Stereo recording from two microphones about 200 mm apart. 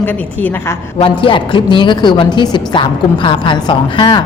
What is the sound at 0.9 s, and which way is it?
A woman's voice, 25° left (ahead or behind).